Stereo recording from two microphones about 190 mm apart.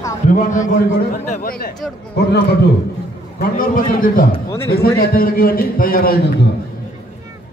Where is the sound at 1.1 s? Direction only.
45° left (ahead or behind).